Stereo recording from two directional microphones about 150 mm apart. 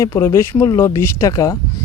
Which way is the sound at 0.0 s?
20° left (ahead or behind).